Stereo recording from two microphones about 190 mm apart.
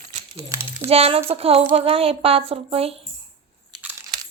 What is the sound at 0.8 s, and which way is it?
Speech, 30° right (ahead or behind).